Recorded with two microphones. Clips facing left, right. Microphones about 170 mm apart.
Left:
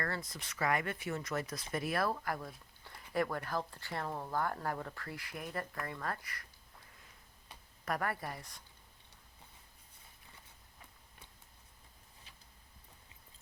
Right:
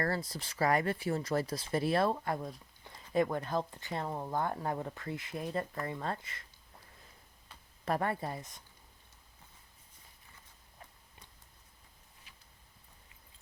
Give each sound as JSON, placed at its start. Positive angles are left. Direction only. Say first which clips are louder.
{"t": 0.0, "sound": "speech", "louder": "right 5 dB", "side_deg": -35}
{"t": 7.9, "sound": "speech", "louder": "right 4 dB", "side_deg": -25}